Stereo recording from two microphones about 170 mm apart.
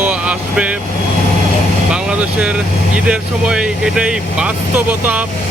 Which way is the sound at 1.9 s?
5° right (ahead or behind).